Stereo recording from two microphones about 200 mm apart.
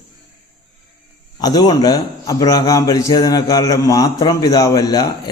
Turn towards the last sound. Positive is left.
turn(degrees=20)  # may be behind; listen again after turning